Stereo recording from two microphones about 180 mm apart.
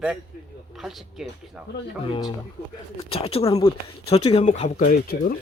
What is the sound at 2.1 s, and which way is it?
Speech, 25° left (ahead or behind).